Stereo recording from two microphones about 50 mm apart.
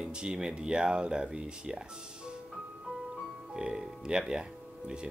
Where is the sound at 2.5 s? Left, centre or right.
Centre.